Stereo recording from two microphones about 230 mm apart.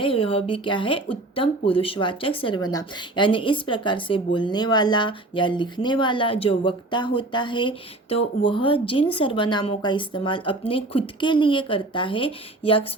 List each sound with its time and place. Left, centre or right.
0.0 s speech: left